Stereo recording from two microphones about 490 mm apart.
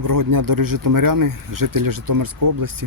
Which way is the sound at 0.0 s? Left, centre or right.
Right.